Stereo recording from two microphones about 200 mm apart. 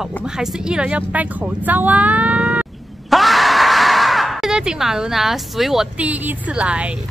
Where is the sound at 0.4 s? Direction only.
5° right (ahead or behind).